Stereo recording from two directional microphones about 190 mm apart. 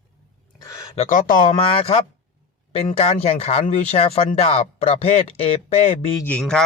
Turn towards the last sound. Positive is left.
turn(degrees=5)  # may be behind; listen again after turning